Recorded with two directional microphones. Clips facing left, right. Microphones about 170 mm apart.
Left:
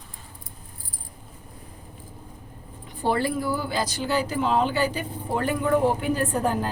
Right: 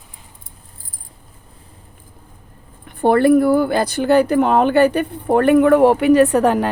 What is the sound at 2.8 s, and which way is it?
A woman's voice, 60° right (ahead or behind).